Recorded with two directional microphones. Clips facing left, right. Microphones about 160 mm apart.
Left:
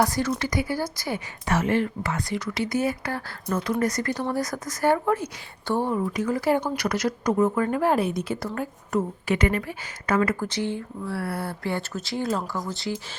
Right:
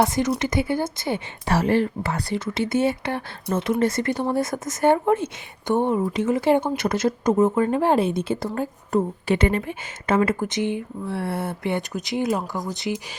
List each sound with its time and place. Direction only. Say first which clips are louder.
0.0 s speech: right 3 dB; 20° right (ahead or behind)